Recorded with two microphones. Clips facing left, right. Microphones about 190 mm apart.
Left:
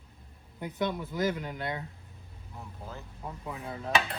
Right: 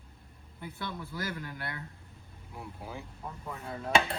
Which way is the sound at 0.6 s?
20° left (ahead or behind).